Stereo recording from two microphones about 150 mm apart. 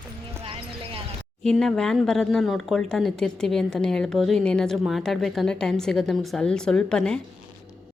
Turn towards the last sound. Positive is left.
turn(degrees=5)  # may be behind; listen again after turning